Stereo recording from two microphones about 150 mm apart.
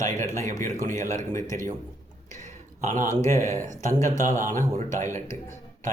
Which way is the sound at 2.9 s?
60° right (ahead or behind).